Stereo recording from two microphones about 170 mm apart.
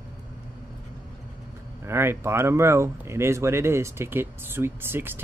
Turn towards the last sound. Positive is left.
turn(degrees=-15)  # may be behind; listen again after turning